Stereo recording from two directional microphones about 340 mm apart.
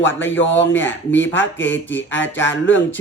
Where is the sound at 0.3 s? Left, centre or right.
Centre.